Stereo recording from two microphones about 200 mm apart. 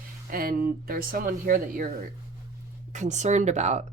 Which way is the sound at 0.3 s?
45° right (ahead or behind).